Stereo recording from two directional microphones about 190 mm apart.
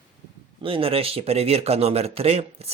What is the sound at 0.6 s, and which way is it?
Speech, 30° right (ahead or behind).